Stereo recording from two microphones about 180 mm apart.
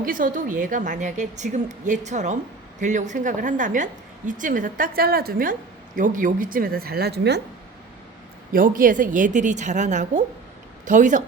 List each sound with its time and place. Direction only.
0.0 s a woman's voice: 50° right (ahead or behind); by 7.4 s 65° right (ahead or behind)
8.5 s a woman's voice: 50° right (ahead or behind)